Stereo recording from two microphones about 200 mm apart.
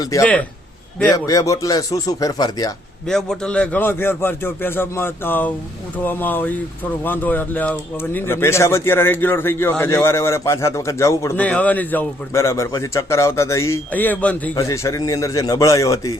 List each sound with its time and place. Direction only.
0.0 s speech: 15° left (ahead or behind)
3.1 s speech: 5° left (ahead or behind)